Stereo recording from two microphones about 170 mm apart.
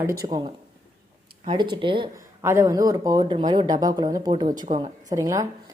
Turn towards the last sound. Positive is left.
turn(degrees=-20)  # may be behind; listen again after turning